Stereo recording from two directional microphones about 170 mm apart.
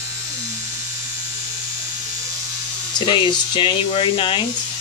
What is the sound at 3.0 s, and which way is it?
Speech, 30° left (ahead or behind).